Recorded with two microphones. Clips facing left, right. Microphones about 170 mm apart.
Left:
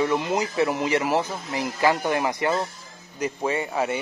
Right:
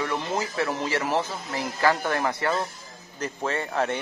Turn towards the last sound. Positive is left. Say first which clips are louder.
# left 2 dB
turn(degrees=10)  # may be behind; listen again after turning